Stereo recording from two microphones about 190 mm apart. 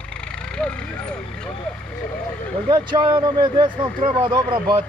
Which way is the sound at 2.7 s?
25° right (ahead or behind).